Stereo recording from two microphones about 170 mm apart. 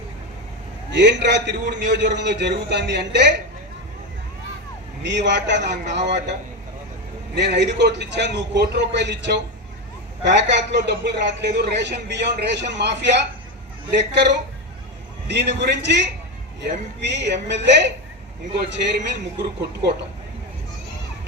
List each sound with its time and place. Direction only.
0.9 s a man's voice: 90° right
5.0 s a man's voice: 90° right
7.3 s a man's voice: 90° right